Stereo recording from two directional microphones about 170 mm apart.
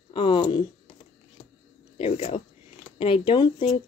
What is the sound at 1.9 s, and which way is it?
Speech, 35° left (ahead or behind).